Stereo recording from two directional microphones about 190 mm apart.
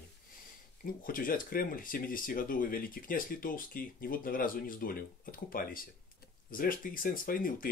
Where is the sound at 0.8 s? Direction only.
45° left (ahead or behind).